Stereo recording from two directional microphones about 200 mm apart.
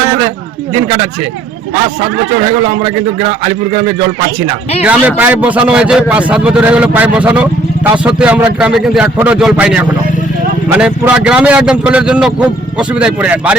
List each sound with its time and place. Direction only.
2.8 s a man's voice: 30° right (ahead or behind)
4.8 s a man's voice: 10° right (ahead or behind)